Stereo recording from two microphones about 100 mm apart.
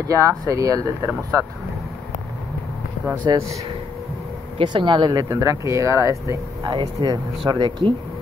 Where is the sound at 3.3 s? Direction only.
45° right (ahead or behind).